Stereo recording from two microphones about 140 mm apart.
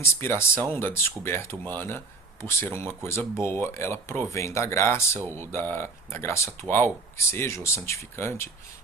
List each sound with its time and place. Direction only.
0.0 s speech: 20° left (ahead or behind)